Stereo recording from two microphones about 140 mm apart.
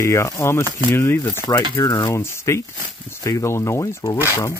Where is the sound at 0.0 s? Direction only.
20° left (ahead or behind).